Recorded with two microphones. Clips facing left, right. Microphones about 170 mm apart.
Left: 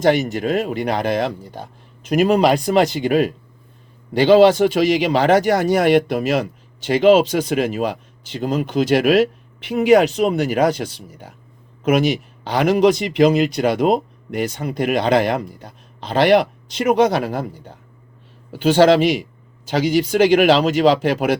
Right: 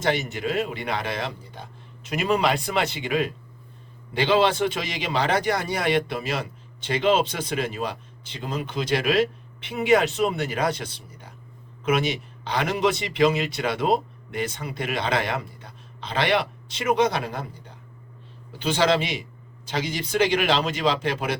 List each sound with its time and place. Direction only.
0.1 s speech: 40° left (ahead or behind)
12.5 s speech: 45° left (ahead or behind)
20.1 s speech: 45° left (ahead or behind)